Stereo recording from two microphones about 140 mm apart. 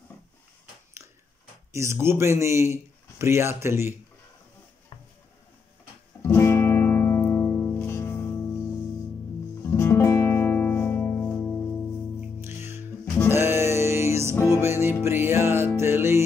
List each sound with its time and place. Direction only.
1.0 s a sound: 20° right (ahead or behind)
1.7 s a man's voice: 20° right (ahead or behind)
6.2 s music: 20° left (ahead or behind)
12.4 s music: 15° right (ahead or behind)
14.3 s music: 20° left (ahead or behind)
14.6 s music: 15° right (ahead or behind)